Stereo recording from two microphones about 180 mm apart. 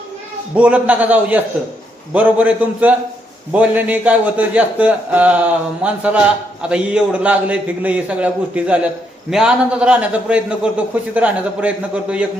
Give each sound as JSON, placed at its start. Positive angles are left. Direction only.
{"t": 0.5, "sound": "a man's voice", "side_deg": -5}